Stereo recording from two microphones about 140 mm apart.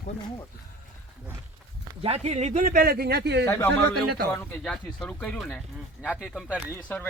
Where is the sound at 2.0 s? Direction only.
45° right (ahead or behind); by 3.2 s 90° right.